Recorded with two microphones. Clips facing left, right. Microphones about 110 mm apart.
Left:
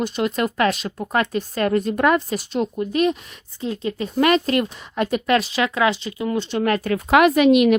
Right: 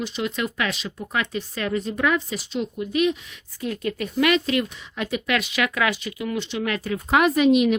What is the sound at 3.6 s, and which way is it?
Speech, 25° left (ahead or behind).